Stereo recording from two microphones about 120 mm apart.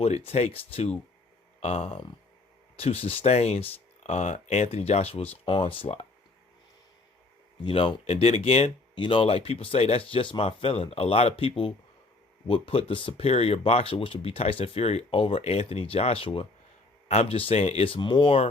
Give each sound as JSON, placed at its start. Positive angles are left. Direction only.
{"t": 0.0, "sound": "speech", "side_deg": 60}
{"t": 5.5, "sound": "speech", "side_deg": 45}
{"t": 7.6, "sound": "speech", "side_deg": 45}